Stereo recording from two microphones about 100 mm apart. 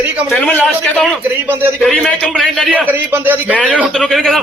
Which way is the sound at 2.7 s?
15° right (ahead or behind).